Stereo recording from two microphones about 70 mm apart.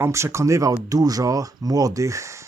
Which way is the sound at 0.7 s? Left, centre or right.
Right.